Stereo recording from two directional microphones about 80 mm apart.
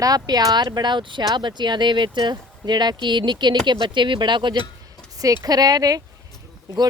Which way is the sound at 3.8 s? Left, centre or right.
Right.